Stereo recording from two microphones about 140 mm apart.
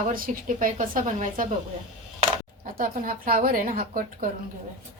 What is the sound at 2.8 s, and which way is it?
A woman's voice, 85° right.